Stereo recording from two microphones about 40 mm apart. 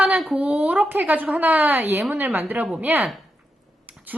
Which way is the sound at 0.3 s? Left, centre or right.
Right.